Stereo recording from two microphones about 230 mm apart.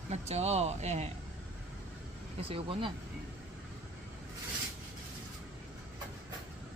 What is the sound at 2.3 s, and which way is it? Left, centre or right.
Speech, right.